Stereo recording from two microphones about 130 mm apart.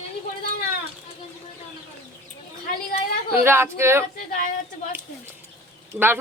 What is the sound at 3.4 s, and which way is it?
Speech, 20° right (ahead or behind).